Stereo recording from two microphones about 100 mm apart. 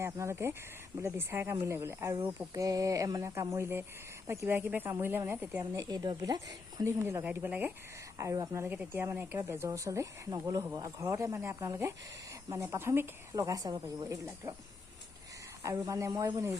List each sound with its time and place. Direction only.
0.0 s speech: 25° right (ahead or behind)
5.7 s speech: 40° right (ahead or behind)
6.8 s speech: 25° right (ahead or behind)
8.2 s speech: 30° right (ahead or behind)
13.3 s speech: 35° right (ahead or behind)
14.4 s speech: 25° right (ahead or behind)
15.6 s speech: 35° right (ahead or behind)